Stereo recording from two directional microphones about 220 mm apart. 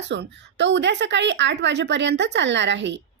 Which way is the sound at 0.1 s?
55° right (ahead or behind).